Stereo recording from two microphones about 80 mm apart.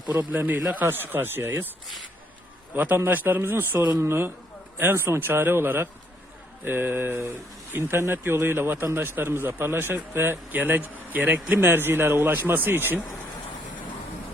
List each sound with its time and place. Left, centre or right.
0.1 s a man's voice: right
2.7 s a man's voice: right